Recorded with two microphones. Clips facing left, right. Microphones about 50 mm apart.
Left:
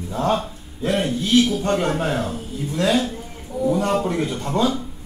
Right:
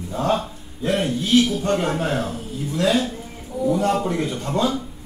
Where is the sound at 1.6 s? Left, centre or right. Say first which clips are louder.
Left 1 dB; centre.